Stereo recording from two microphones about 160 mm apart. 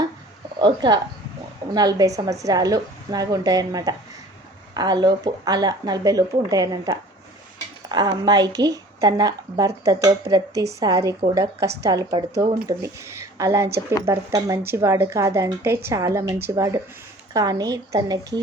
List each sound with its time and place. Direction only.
0.6 s a woman's voice: 30° right (ahead or behind)